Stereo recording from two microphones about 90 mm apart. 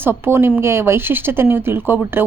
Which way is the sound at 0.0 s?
25° right (ahead or behind).